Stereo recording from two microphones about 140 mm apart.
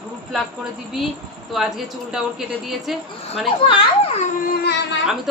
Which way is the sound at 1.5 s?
Centre (ahead or behind).